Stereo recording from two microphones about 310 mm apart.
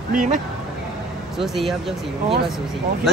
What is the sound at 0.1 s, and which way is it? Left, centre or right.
Speech, right.